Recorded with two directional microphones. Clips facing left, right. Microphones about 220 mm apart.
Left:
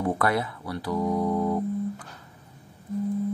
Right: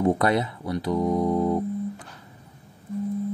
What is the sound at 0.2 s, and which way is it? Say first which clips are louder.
Speech: right 3 dB; 20° right (ahead or behind).